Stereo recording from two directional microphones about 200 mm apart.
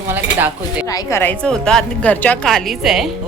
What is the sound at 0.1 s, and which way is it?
Dishes, 10° right (ahead or behind).